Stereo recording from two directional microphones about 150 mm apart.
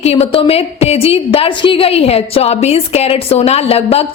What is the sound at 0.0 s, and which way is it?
A woman's voice, 45° left (ahead or behind).